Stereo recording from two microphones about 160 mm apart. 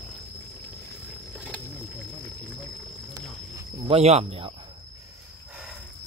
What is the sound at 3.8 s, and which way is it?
Speech, 40° right (ahead or behind).